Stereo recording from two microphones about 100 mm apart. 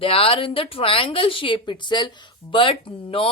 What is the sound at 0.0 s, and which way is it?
A woman's voice, 65° left (ahead or behind).